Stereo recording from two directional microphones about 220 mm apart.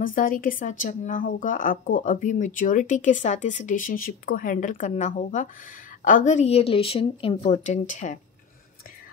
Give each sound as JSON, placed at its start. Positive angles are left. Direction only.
{"t": 0.0, "sound": "a woman's voice", "side_deg": 40}